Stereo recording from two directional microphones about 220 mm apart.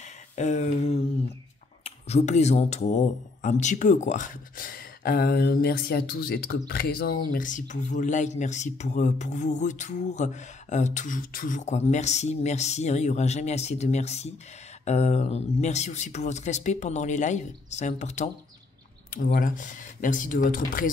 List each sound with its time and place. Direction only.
0.4 s speech: 30° left (ahead or behind)